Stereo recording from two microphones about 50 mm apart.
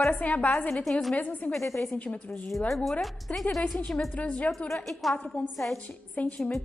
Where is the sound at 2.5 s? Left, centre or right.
Centre.